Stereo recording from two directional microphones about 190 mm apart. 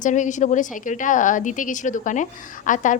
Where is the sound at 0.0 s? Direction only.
40° left (ahead or behind).